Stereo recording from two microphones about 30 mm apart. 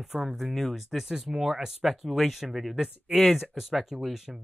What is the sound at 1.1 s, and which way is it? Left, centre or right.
Speech, centre.